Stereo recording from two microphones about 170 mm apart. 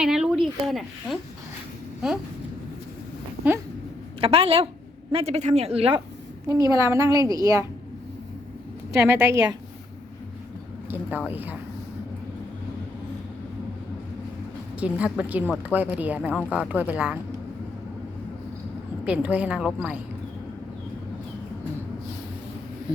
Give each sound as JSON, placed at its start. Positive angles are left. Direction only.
{"t": 0.0, "sound": "speech", "side_deg": -5}
{"t": 4.2, "sound": "a woman's voice", "side_deg": -35}
{"t": 6.5, "sound": "a woman's voice", "side_deg": -20}
{"t": 9.0, "sound": "speech", "side_deg": -15}
{"t": 10.8, "sound": "a sound", "side_deg": -10}
{"t": 11.3, "sound": "speech", "side_deg": -10}
{"t": 14.8, "sound": "speech", "side_deg": -10}
{"t": 19.0, "sound": "speech", "side_deg": -10}